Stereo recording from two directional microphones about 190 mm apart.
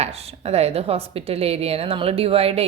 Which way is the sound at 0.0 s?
35° right (ahead or behind).